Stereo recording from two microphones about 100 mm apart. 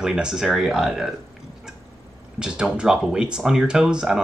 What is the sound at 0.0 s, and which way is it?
Speech, 5° right (ahead or behind).